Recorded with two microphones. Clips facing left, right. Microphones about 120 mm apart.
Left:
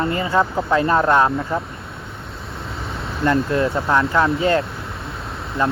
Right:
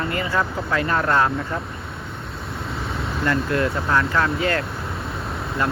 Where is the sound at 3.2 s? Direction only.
20° left (ahead or behind).